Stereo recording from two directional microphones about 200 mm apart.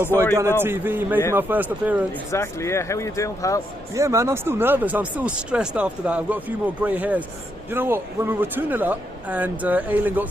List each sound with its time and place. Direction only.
0.1 s speech: 10° left (ahead or behind)
0.6 s speech: 10° right (ahead or behind)
2.3 s speech: 15° left (ahead or behind)
3.9 s speech: 15° right (ahead or behind)